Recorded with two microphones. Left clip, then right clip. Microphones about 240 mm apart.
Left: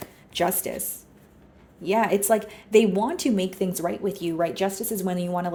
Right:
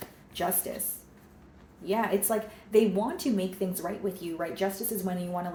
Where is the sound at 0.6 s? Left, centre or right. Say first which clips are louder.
Left 6 dB; left.